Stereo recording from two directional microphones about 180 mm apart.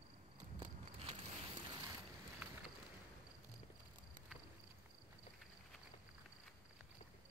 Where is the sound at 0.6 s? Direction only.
35° right (ahead or behind).